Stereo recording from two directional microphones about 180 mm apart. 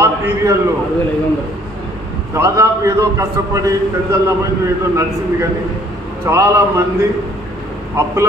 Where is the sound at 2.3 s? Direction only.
15° right (ahead or behind).